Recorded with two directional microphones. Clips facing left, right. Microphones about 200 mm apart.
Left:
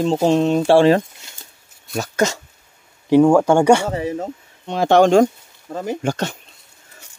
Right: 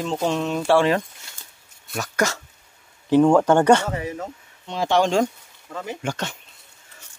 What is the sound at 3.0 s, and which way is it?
Speech, 10° left (ahead or behind).